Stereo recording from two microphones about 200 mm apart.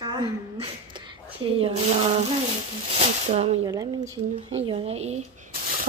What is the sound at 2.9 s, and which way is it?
Speech, 35° right (ahead or behind).